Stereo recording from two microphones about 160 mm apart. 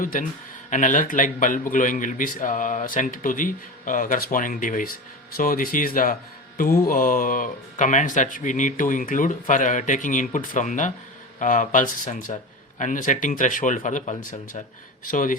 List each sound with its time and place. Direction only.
0.0 s a man's voice: 60° left (ahead or behind)